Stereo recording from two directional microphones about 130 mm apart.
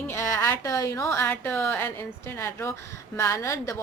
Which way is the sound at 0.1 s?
20° left (ahead or behind).